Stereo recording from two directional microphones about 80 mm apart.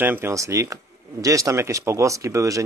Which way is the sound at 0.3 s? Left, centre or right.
Right.